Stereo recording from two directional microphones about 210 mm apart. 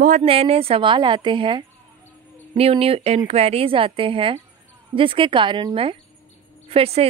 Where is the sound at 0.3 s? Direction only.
30° right (ahead or behind).